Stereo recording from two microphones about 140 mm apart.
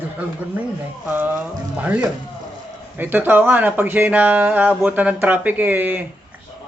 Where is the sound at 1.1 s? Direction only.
10° right (ahead or behind).